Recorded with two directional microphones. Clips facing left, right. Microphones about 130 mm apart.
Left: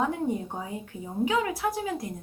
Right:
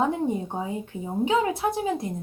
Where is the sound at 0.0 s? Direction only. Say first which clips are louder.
Right 3 dB; 25° right (ahead or behind).